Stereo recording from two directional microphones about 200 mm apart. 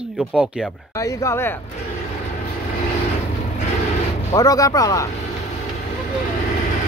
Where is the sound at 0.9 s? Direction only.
15° left (ahead or behind).